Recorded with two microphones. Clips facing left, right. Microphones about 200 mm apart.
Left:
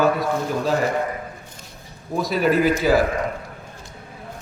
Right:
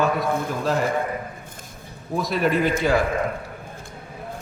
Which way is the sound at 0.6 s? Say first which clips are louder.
Left 2 dB; centre (ahead or behind).